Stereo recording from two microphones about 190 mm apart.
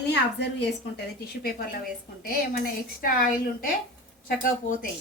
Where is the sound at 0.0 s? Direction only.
65° left (ahead or behind); by 4.9 s 45° left (ahead or behind).